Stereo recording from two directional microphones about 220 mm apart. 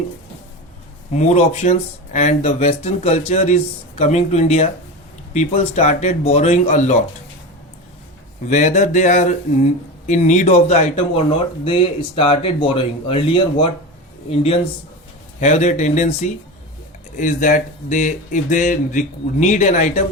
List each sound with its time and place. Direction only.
1.1 s speech: 30° left (ahead or behind)
8.4 s speech: 35° left (ahead or behind)